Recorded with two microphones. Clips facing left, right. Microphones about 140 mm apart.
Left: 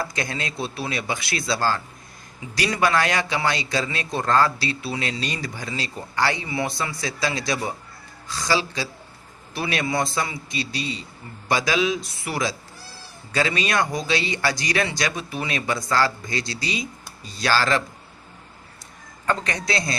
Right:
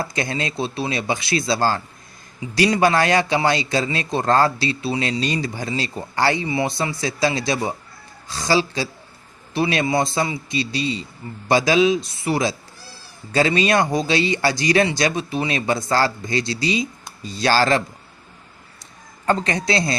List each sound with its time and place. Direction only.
0.0 s a man's voice: 25° right (ahead or behind)
19.2 s a man's voice: 30° right (ahead or behind)